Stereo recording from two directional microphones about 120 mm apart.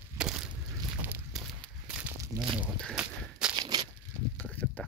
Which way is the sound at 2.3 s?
30° right (ahead or behind).